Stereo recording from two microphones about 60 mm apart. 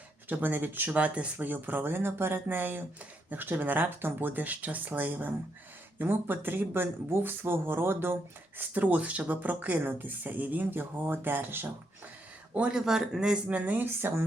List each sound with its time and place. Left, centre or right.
0.3 s speech: right
0.9 s speech: right
8.7 s speech: right
12.7 s speech: centre
13.5 s speech: right